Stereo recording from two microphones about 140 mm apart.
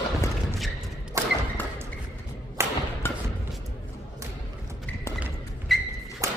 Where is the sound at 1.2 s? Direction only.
20° right (ahead or behind).